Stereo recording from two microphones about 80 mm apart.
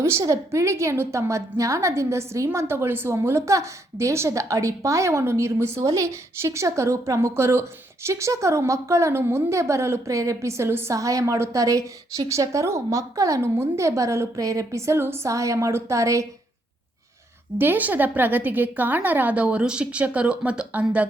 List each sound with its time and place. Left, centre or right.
0.0 s a woman's voice: right
10.9 s a woman's voice: right
17.6 s a woman's voice: right